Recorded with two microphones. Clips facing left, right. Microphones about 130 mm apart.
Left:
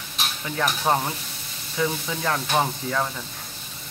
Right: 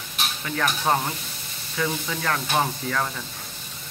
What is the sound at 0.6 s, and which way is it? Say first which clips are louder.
Stir: left 1 dB; 5° left (ahead or behind).